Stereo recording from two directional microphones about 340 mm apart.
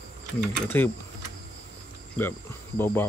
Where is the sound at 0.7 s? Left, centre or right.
Centre.